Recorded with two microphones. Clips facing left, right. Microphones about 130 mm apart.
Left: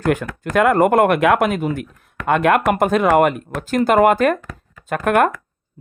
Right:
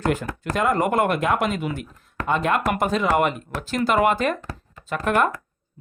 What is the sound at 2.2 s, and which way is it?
Speech, 60° left (ahead or behind).